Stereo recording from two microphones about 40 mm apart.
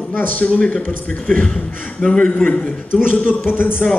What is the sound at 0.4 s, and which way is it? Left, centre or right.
Speech, left.